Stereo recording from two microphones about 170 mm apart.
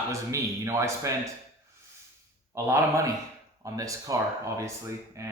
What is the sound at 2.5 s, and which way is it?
Speech, 15° right (ahead or behind).